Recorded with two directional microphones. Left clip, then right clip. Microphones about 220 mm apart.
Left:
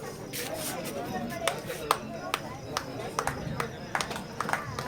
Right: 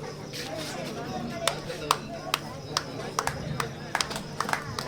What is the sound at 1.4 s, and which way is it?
Chop, 20° right (ahead or behind).